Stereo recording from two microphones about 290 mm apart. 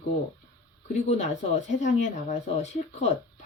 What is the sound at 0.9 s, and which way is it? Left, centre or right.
Speech, left.